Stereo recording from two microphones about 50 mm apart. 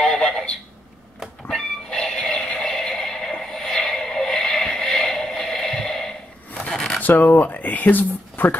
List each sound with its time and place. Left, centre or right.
0.0 s telephone: centre
1.5 s music: centre
6.7 s zipper: centre
7.0 s speech: left